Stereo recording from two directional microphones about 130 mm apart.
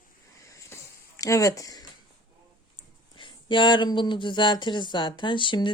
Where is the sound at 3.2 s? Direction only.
40° left (ahead or behind).